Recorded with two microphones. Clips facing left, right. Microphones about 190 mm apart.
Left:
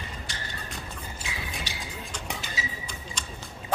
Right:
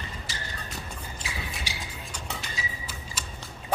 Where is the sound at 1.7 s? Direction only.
10° right (ahead or behind).